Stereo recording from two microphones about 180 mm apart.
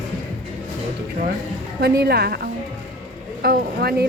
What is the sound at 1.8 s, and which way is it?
Speech, 65° right (ahead or behind).